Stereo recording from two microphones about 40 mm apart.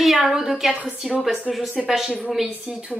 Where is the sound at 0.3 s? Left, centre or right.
Centre.